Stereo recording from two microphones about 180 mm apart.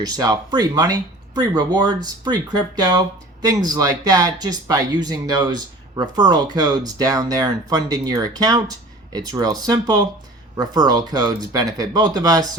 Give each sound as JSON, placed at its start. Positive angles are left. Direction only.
{"t": 0.0, "sound": "speech", "side_deg": -20}